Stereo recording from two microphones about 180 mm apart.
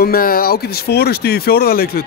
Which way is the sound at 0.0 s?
55° left (ahead or behind).